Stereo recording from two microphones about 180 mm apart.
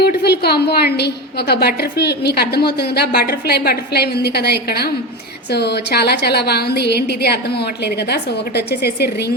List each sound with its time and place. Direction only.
0.0 s a woman's voice: 65° left (ahead or behind)